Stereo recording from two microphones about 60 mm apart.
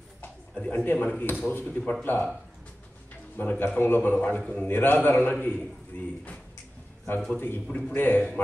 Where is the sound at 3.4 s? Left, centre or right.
Left.